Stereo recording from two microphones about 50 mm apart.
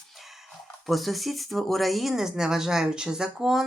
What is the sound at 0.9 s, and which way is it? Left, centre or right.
Speech, centre.